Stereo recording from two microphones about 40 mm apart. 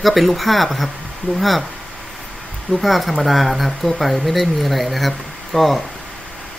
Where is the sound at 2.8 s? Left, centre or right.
Centre.